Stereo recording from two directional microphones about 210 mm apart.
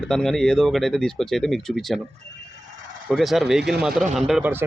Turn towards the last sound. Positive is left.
turn(degrees=-5)  # may be behind; listen again after turning